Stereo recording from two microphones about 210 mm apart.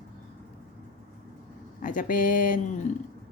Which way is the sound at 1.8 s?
40° left (ahead or behind).